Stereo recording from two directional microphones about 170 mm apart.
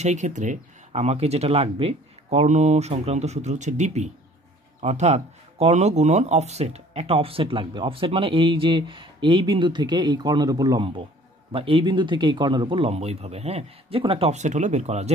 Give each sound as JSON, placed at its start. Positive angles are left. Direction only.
{"t": 0.0, "sound": "speech", "side_deg": -45}